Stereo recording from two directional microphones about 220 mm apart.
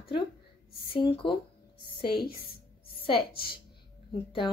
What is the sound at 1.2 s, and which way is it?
Speech, 20° left (ahead or behind).